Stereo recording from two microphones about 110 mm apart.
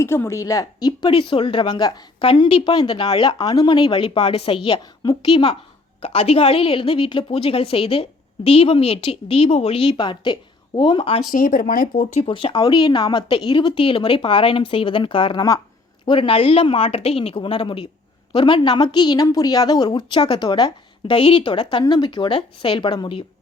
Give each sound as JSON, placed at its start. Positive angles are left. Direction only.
{"t": 0.0, "sound": "a woman's voice", "side_deg": 25}
{"t": 2.2, "sound": "a woman's voice", "side_deg": 60}
{"t": 10.0, "sound": "a woman's voice", "side_deg": 45}
{"t": 16.0, "sound": "a woman's voice", "side_deg": 55}